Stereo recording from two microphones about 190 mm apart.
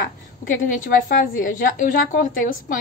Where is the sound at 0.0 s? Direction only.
45° left (ahead or behind).